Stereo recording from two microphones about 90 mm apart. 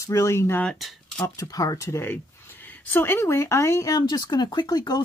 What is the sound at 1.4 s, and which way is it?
Speech, 40° left (ahead or behind).